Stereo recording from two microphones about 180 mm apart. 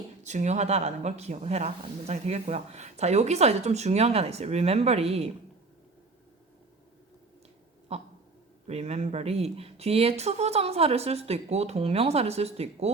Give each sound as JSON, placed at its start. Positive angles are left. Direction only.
{"t": 0.3, "sound": "speech", "side_deg": -40}
{"t": 7.9, "sound": "a sound", "side_deg": -35}
{"t": 8.6, "sound": "speech", "side_deg": -35}